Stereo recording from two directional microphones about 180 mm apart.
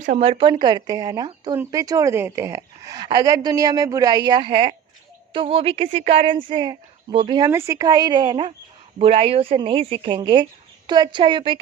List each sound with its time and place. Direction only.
0.2 s speech: 30° right (ahead or behind)